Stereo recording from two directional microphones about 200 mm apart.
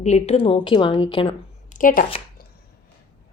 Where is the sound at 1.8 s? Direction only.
45° left (ahead or behind).